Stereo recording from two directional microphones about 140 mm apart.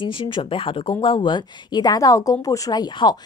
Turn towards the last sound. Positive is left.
turn(degrees=30)  # may be behind; listen again after turning